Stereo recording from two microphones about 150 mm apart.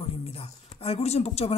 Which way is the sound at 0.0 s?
40° left (ahead or behind).